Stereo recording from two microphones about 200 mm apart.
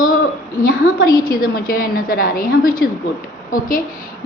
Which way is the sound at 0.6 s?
45° left (ahead or behind).